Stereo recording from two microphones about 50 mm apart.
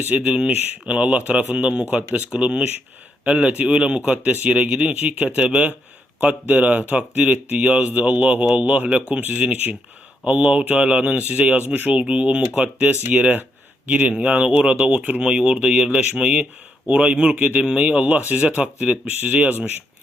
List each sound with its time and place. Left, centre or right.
0.0 s speech: right
9.2 s speech: right
15.2 s speech: centre